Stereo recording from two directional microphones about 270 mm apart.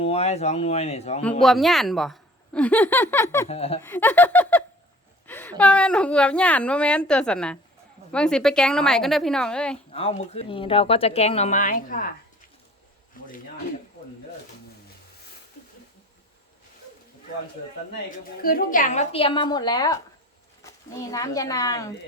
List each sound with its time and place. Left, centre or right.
0.0 s speech: left
1.2 s a woman's voice: centre
3.5 s speech: left
3.8 s a sound: centre
5.2 s a woman's voice: centre
9.9 s speech: left
13.2 s a sound: left
18.4 s speech: left; by 21.9 s centre